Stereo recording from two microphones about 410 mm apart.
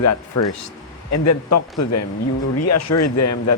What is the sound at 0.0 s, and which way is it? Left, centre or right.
Speech, left.